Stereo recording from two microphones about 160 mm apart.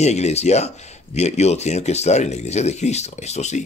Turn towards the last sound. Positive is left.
turn(degrees=45)  # may be behind; listen again after turning